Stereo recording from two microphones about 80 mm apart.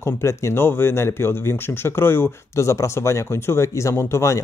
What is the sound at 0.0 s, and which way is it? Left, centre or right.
Speech, left.